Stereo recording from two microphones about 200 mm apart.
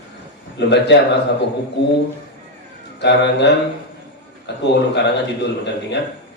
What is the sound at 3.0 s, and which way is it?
A man's voice, 60° left (ahead or behind).